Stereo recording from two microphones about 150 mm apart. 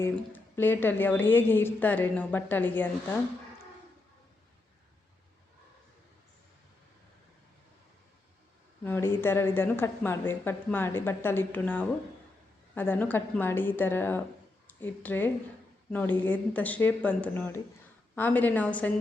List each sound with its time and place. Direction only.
0.0 s a woman's voice: 15° left (ahead or behind)
8.8 s a woman's voice: 15° left (ahead or behind)